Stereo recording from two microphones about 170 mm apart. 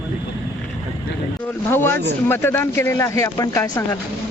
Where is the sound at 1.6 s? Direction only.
15° left (ahead or behind).